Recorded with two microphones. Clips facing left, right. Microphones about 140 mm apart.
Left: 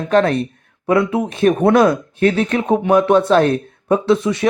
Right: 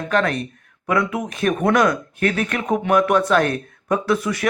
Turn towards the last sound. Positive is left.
turn(degrees=25)  # may be behind; listen again after turning